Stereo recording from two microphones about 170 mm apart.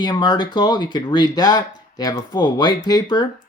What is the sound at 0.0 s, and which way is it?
Speech, 25° left (ahead or behind).